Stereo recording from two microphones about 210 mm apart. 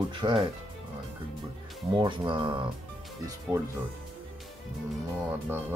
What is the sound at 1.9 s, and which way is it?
Speech, 20° right (ahead or behind).